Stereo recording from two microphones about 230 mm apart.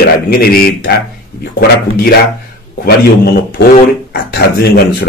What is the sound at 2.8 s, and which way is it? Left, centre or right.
Speech, left.